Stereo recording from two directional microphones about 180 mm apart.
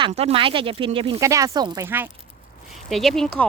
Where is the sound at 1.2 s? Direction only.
15° right (ahead or behind).